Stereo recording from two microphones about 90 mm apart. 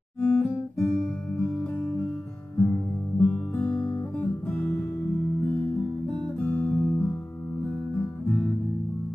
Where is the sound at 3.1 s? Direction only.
5° left (ahead or behind).